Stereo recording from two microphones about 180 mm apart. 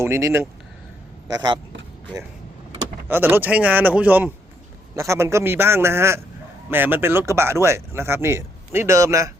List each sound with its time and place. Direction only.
0.0 s a man's voice: 15° right (ahead or behind)
3.1 s speech: 10° right (ahead or behind)